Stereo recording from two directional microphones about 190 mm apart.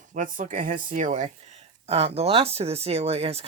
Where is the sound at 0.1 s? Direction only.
45° right (ahead or behind).